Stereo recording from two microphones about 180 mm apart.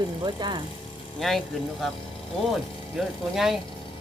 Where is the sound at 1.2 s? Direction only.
Centre (ahead or behind).